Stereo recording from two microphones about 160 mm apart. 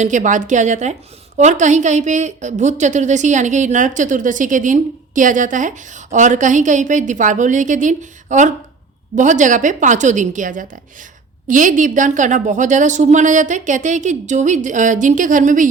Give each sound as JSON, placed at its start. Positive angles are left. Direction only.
{"t": 0.0, "sound": "a woman's voice", "side_deg": -50}